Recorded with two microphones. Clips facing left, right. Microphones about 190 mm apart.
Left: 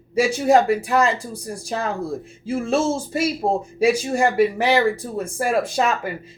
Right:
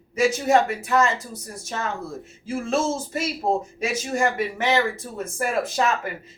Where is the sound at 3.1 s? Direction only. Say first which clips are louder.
Left 2 dB; 30° left (ahead or behind).